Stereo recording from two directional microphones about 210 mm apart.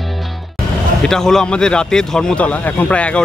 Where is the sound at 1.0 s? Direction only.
Centre (ahead or behind).